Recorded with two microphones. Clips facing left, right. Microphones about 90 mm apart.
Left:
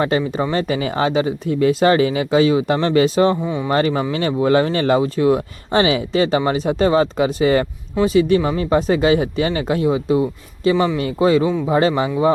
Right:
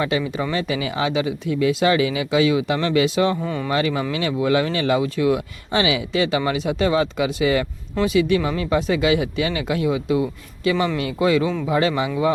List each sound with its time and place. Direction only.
0.0 s speech: 35° left (ahead or behind)
3.4 s speech: 15° left (ahead or behind)
3.7 s speech: 40° left (ahead or behind)
11.4 s speech: 20° left (ahead or behind)
11.7 s speech: 35° left (ahead or behind)